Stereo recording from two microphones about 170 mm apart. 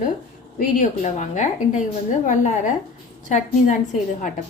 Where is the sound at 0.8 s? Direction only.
45° left (ahead or behind).